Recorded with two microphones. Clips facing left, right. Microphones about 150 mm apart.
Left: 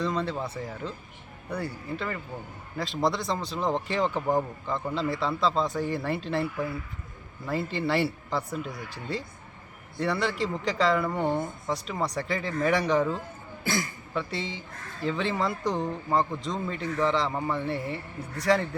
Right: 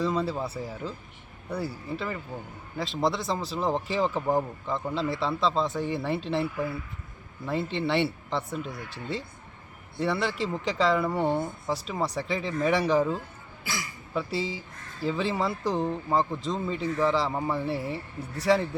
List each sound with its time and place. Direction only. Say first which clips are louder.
0.0 s speech: right 1 dB; 5° right (ahead or behind)
13.7 s a man's voice: left 6 dB; 50° left (ahead or behind)
14.1 s speech: right 4 dB; 5° right (ahead or behind)